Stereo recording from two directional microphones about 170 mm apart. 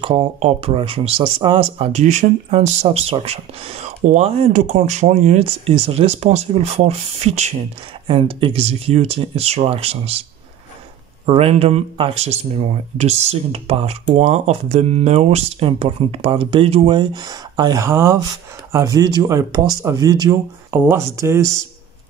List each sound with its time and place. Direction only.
0.0 s speech: 30° right (ahead or behind)
1.9 s speech: 45° right (ahead or behind)
11.2 s speech: 35° right (ahead or behind); by 21.5 s 15° right (ahead or behind)